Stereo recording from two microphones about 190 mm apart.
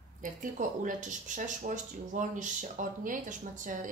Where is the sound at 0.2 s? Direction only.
40° right (ahead or behind).